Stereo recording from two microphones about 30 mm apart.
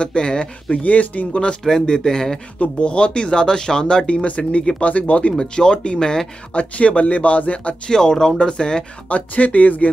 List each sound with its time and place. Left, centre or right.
0.0 s speech: left
0.8 s speech: left
1.3 s speech: left
1.7 s speech: centre
2.8 s speech: left
4.1 s speech: left
5.4 s speech: left
6.5 s speech: left
7.8 s speech: left
9.1 s speech: left